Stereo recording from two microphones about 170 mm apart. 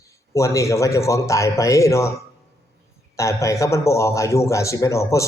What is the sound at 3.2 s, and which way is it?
A man's voice, 15° left (ahead or behind).